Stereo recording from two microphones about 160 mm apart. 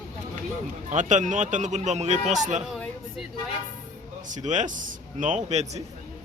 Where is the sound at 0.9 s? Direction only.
50° right (ahead or behind).